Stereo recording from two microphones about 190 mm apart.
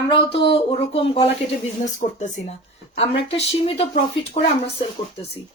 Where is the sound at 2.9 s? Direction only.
30° left (ahead or behind).